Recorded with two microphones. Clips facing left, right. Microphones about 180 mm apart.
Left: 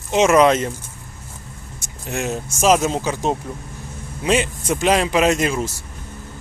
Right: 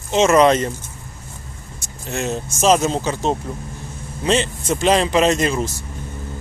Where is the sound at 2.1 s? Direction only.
10° left (ahead or behind).